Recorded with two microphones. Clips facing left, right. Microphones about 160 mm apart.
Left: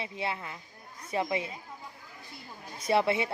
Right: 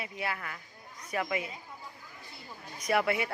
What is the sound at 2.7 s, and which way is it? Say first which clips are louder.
Speech: left 2 dB; 30° left (ahead or behind).